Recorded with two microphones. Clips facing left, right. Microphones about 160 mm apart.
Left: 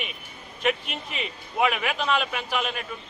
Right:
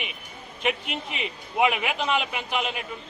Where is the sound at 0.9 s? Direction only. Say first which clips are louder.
Right 1 dB; 75° right (ahead or behind).